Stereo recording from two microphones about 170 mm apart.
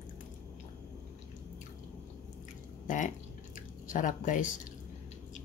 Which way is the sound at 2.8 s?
50° left (ahead or behind).